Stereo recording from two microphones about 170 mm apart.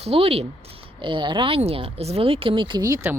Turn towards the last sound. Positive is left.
turn(degrees=-20)  # may be behind; listen again after turning